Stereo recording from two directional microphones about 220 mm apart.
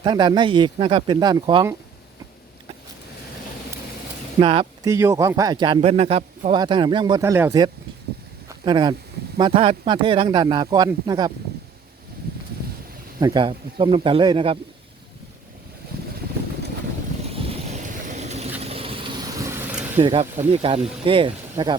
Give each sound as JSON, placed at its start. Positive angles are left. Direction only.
{"t": 0.0, "sound": "speech", "side_deg": -20}
{"t": 4.4, "sound": "speech", "side_deg": -25}
{"t": 13.1, "sound": "speech", "side_deg": -20}
{"t": 17.2, "sound": "vehicle", "side_deg": -25}
{"t": 20.0, "sound": "speech", "side_deg": -25}